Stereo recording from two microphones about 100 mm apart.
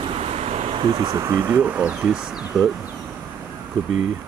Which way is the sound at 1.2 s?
30° right (ahead or behind).